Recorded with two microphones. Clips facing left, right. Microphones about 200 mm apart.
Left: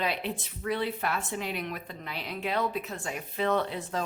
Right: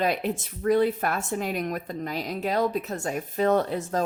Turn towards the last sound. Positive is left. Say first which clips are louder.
# right 5 dB
turn(degrees=-45)  # may be behind; listen again after turning